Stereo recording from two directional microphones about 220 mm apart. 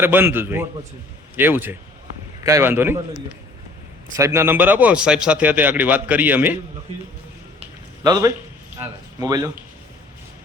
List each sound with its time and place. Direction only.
0.0 s a man's voice: 10° right (ahead or behind)
4.2 s a man's voice: 10° right (ahead or behind)
7.6 s a sound: 15° right (ahead or behind)
8.8 s speech: 15° right (ahead or behind)